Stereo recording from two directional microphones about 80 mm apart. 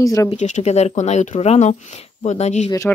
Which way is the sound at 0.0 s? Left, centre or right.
Left.